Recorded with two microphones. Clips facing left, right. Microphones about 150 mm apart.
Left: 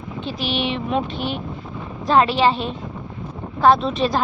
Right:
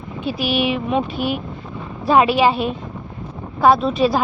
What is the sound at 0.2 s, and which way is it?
A woman's voice, 10° right (ahead or behind).